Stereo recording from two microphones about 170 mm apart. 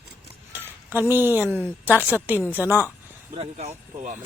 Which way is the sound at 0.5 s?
10° right (ahead or behind).